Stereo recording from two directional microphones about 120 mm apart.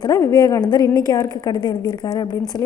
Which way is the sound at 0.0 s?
25° left (ahead or behind).